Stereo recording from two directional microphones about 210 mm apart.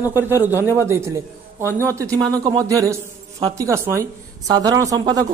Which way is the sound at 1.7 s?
10° left (ahead or behind).